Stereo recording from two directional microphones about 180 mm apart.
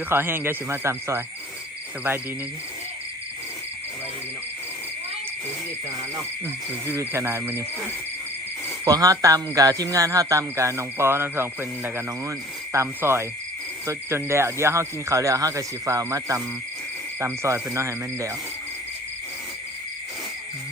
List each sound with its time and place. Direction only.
0.1 s speech: 10° right (ahead or behind)
6.9 s speech: 15° right (ahead or behind)
8.8 s speech: 20° right (ahead or behind)